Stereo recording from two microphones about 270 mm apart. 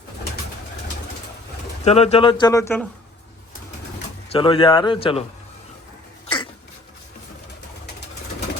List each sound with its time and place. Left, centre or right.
1.8 s speech: left
4.3 s speech: centre